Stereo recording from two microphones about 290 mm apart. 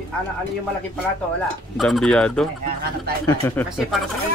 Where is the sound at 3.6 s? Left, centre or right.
Centre.